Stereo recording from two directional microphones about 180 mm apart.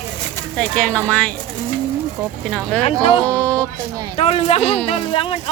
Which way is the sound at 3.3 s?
5° left (ahead or behind).